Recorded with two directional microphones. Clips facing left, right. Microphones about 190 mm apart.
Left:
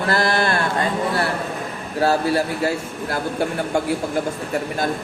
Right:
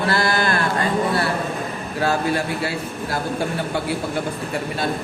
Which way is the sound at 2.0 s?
35° left (ahead or behind).